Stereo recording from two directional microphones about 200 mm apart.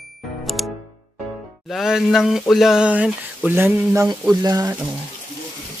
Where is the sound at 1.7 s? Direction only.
Centre (ahead or behind).